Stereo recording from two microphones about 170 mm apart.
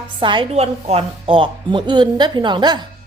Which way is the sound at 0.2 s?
30° right (ahead or behind).